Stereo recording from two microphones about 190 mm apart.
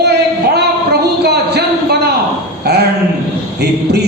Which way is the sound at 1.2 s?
60° right (ahead or behind).